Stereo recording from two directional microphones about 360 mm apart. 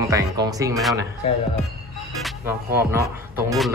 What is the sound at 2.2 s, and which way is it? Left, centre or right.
Speech, centre.